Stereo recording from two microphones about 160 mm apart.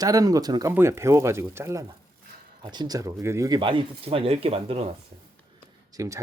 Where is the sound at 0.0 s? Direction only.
20° right (ahead or behind); by 4.9 s 40° right (ahead or behind).